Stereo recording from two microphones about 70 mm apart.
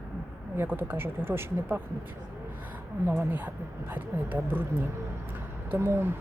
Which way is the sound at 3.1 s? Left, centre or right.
Right.